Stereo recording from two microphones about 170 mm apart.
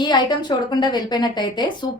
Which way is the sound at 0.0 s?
25° left (ahead or behind).